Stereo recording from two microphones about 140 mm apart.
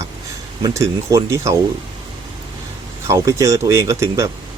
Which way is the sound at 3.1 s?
20° right (ahead or behind).